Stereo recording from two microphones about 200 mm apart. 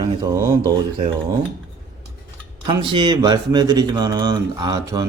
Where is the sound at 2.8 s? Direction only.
20° right (ahead or behind).